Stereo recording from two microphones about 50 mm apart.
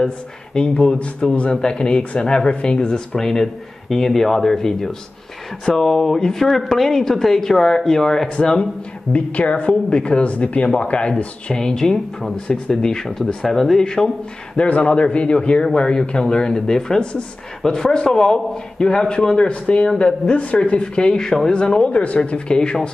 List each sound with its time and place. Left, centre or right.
0.6 s a woman's voice: centre
9.1 s a woman's voice: left
14.6 s a woman's voice: left